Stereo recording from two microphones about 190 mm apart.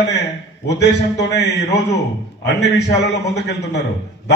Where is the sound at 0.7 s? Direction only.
65° left (ahead or behind).